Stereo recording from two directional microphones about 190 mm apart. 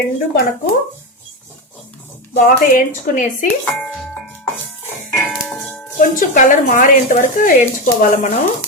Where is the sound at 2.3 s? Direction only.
45° left (ahead or behind).